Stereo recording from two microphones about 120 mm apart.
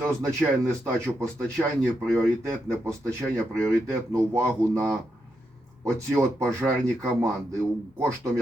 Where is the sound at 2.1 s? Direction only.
20° right (ahead or behind).